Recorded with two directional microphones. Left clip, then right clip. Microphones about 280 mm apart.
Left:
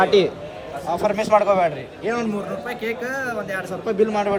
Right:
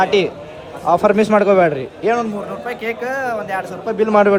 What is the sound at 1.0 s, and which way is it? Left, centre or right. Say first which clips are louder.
A man's voice: right 2 dB; centre.